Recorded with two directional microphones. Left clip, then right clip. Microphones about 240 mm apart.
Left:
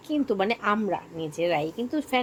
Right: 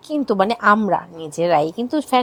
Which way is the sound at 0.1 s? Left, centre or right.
Right.